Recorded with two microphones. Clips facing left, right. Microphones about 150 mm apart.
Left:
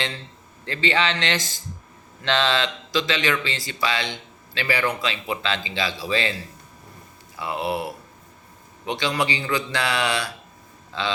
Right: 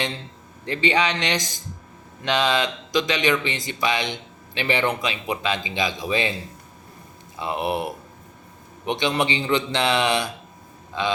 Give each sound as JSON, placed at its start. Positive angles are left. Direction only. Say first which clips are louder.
{"t": 0.6, "sound": "a man's voice", "louder": "right 2 dB", "side_deg": -15}